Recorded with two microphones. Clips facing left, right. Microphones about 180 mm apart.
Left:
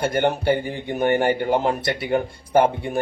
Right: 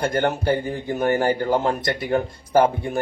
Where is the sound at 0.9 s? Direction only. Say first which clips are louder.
Left 1 dB; 25° left (ahead or behind).